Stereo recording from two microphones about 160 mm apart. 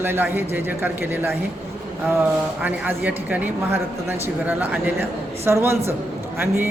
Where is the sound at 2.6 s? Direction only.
10° right (ahead or behind).